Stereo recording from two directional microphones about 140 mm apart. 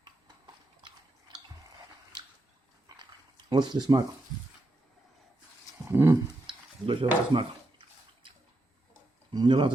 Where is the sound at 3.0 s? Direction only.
30° right (ahead or behind).